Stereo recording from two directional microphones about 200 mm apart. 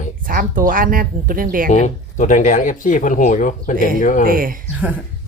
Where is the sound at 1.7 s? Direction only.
40° left (ahead or behind).